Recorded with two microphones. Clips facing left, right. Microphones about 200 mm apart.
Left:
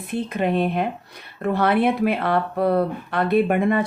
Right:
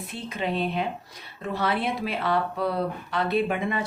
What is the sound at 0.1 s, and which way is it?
Speech, 55° left (ahead or behind).